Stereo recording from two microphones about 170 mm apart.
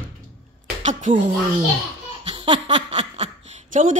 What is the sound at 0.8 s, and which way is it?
Speech, 45° right (ahead or behind).